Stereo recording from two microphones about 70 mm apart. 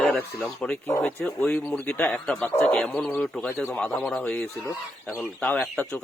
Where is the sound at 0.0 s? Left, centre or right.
Left.